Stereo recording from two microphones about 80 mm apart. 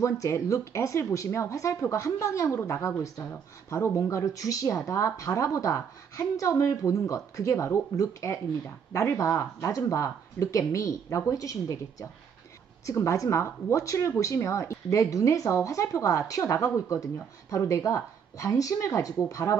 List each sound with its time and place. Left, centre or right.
0.0 s speech: left